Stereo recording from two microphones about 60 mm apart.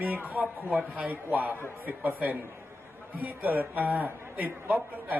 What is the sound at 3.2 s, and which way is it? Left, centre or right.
A man's voice, right.